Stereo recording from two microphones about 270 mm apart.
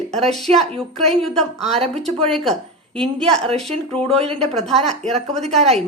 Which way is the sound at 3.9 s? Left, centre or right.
Right.